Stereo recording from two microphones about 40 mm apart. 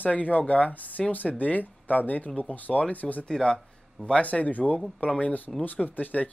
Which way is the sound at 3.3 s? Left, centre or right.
Centre.